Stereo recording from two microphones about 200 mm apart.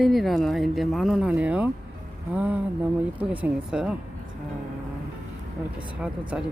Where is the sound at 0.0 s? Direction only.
Centre (ahead or behind).